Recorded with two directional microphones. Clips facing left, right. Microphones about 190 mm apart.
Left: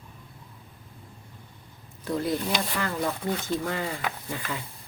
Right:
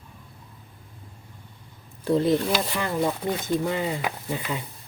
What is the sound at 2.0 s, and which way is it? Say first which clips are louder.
Speech: right 6 dB; 25° right (ahead or behind).